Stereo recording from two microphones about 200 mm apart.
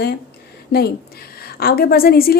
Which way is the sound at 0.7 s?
50° left (ahead or behind).